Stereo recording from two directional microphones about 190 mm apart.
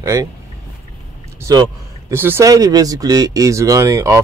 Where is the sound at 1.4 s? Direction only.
20° right (ahead or behind).